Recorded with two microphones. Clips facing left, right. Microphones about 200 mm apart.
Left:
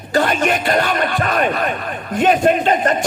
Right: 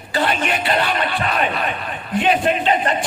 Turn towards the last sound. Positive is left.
turn(degrees=45)  # may be behind; listen again after turning